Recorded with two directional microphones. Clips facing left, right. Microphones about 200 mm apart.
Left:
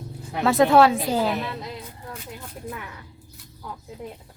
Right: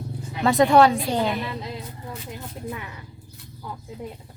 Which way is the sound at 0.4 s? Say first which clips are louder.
Even; centre (ahead or behind).